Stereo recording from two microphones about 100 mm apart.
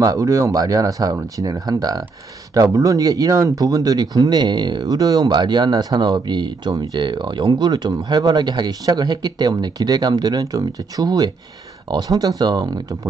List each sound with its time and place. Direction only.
0.0 s speech: 35° right (ahead or behind)